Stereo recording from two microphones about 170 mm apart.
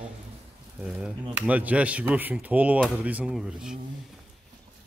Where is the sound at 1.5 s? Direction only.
10° right (ahead or behind).